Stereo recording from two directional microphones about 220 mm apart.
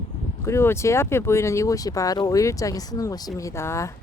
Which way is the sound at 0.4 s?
10° left (ahead or behind).